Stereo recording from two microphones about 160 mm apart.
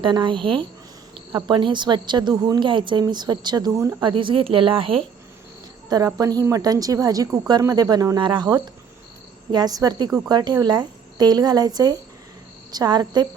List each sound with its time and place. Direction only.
0.0 s a woman's voice: 30° right (ahead or behind)
4.1 s speech: 30° right (ahead or behind)
6.1 s a woman's voice: 20° right (ahead or behind)